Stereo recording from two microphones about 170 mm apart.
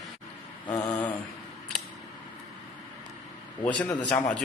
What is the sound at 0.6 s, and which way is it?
Mantra, 20° left (ahead or behind).